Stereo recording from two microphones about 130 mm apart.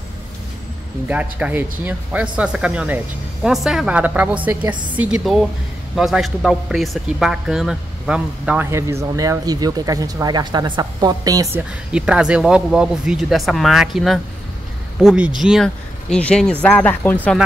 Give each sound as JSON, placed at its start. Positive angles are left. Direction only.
{"t": 1.0, "sound": "speech", "side_deg": -10}
{"t": 8.6, "sound": "speech", "side_deg": -20}
{"t": 11.5, "sound": "speech", "side_deg": -5}